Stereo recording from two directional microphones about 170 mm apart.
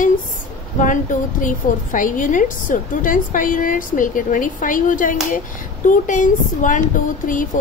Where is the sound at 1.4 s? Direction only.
50° left (ahead or behind).